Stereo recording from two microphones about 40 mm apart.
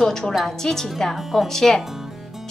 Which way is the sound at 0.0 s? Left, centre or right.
Centre.